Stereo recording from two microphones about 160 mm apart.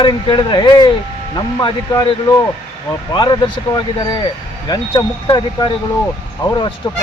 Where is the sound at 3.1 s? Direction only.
30° left (ahead or behind).